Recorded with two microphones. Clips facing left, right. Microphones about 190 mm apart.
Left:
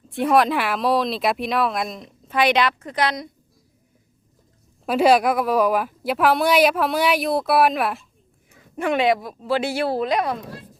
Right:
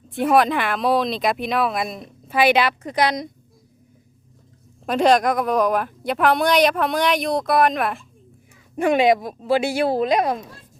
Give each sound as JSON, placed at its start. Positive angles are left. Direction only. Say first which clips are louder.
{"t": 0.1, "sound": "speech", "louder": "right 1 dB", "side_deg": 0}
{"t": 4.9, "sound": "speech", "louder": "even", "side_deg": 5}
{"t": 8.7, "sound": "speech", "louder": "right 3 dB", "side_deg": -15}